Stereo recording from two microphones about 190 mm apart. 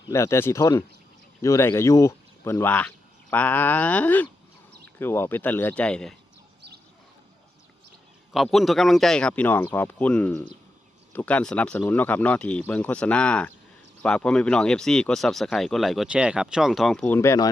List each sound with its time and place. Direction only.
0.1 s speech: 15° left (ahead or behind)
8.3 s speech: centre (ahead or behind)
17.2 s speech: 15° left (ahead or behind)